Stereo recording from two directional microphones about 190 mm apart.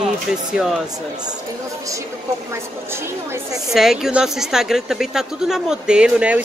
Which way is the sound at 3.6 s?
Centre (ahead or behind).